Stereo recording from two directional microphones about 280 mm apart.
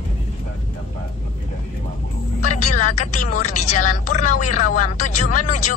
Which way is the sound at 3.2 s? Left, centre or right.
Left.